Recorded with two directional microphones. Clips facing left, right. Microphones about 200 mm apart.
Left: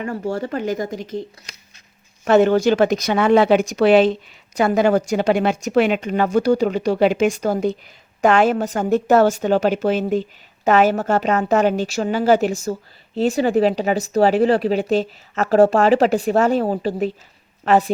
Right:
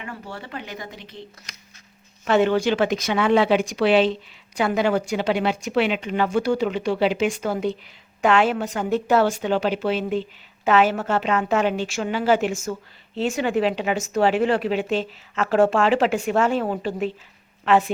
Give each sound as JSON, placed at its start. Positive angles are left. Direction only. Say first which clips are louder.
{"t": 0.0, "sound": "a woman's voice", "louder": "left 12 dB", "side_deg": 40}
{"t": 2.2, "sound": "a woman's voice", "louder": "left 5 dB", "side_deg": 45}